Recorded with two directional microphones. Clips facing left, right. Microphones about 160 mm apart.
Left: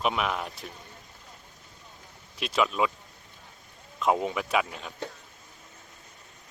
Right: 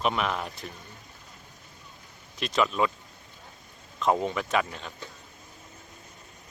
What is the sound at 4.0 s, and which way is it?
Speech, 5° left (ahead or behind).